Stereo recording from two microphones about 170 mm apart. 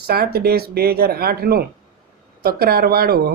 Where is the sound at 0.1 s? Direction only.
65° right (ahead or behind).